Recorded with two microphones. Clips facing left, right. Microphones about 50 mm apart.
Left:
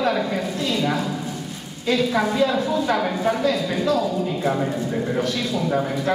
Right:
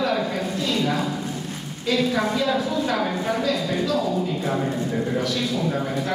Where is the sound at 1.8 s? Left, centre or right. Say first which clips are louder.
Left 2 dB; left.